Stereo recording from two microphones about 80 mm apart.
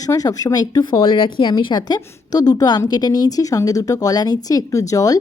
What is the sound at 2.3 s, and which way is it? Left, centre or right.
A woman's voice, left.